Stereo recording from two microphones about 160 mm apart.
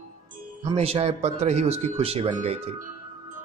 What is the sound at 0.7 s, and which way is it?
A man's voice, 40° right (ahead or behind).